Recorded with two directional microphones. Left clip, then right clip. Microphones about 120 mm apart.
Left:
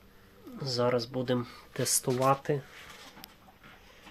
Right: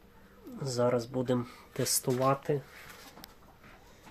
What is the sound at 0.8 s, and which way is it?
Speech, 15° right (ahead or behind).